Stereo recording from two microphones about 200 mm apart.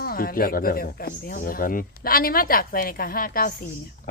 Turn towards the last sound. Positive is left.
turn(degrees=45)  # may be behind; listen again after turning